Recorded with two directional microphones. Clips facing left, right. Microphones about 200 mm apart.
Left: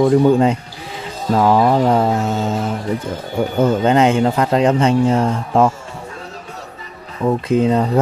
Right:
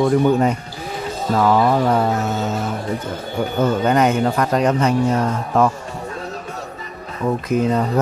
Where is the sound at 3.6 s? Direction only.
25° left (ahead or behind).